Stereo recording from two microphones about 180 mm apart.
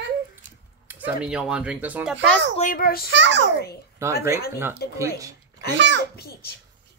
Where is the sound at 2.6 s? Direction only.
50° left (ahead or behind).